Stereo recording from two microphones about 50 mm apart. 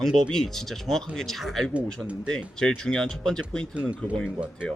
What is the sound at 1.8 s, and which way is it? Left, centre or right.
Speech, right.